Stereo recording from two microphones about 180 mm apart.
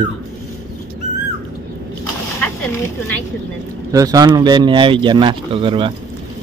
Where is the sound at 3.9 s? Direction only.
20° right (ahead or behind).